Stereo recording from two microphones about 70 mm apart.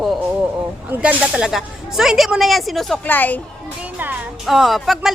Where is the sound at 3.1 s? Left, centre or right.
Left.